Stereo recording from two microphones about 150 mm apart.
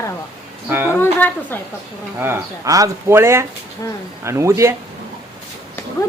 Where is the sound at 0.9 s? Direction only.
15° left (ahead or behind).